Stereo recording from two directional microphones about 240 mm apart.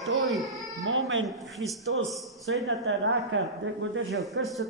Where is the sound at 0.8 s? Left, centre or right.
Right.